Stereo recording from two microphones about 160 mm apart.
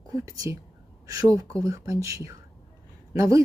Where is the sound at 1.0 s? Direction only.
20° right (ahead or behind).